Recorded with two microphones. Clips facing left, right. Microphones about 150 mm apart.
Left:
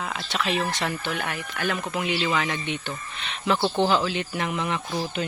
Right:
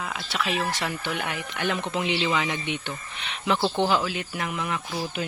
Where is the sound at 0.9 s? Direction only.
15° right (ahead or behind).